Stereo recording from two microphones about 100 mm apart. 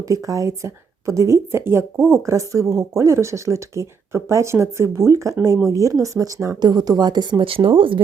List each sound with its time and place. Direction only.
0.0 s speech: 35° right (ahead or behind)
6.6 s speech: 45° right (ahead or behind); by 8.0 s 60° right (ahead or behind)